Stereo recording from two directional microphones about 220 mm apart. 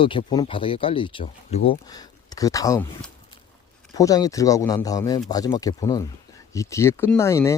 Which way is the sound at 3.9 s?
15° left (ahead or behind).